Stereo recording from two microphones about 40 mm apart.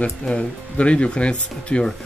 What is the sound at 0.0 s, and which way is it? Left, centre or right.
Speech, left.